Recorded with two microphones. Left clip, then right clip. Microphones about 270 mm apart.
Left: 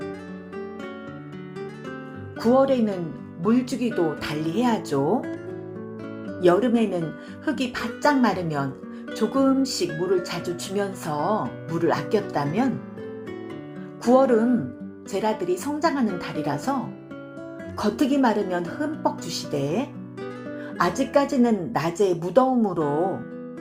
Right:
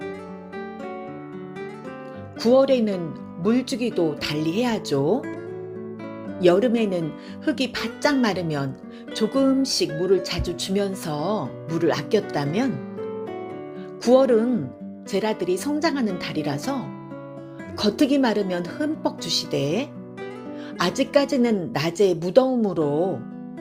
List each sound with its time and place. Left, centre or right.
2.4 s speech: right
6.4 s speech: right
14.0 s speech: centre
17.7 s speech: centre